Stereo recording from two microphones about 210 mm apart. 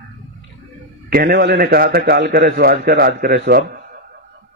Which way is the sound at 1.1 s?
45° right (ahead or behind).